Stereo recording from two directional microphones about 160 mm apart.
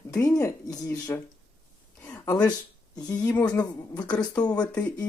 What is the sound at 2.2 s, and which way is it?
Speech, 20° left (ahead or behind).